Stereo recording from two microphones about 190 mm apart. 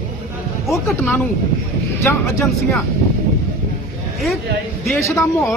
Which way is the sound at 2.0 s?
15° left (ahead or behind).